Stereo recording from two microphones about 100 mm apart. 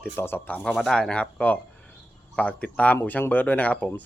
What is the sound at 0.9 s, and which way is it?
Speech, 10° left (ahead or behind).